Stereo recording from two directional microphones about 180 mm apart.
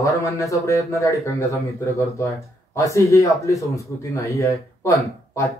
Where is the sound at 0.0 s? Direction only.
15° left (ahead or behind).